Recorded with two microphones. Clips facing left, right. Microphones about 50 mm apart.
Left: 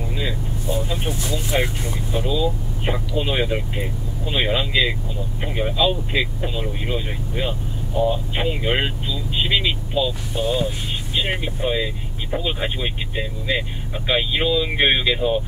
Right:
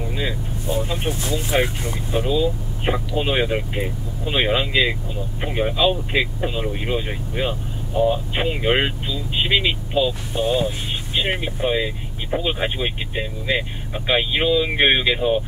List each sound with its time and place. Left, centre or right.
0.1 s vehicle: centre
0.8 s speech: centre